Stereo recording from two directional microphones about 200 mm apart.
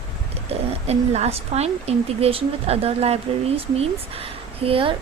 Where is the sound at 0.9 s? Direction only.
30° right (ahead or behind).